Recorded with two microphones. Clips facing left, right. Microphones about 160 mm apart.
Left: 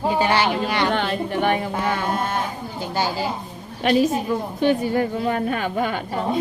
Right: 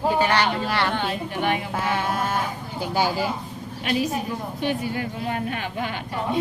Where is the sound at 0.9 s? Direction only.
85° left.